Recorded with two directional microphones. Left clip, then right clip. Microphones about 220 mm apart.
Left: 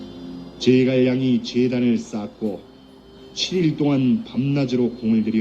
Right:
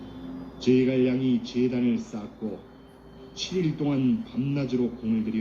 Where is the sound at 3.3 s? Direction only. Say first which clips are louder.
Left 8 dB; 40° left (ahead or behind).